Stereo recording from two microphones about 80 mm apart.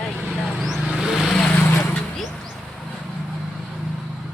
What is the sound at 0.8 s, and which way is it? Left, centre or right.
Vehicle, centre.